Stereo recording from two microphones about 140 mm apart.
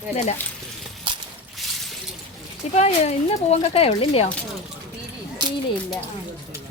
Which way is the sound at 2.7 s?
50° left (ahead or behind).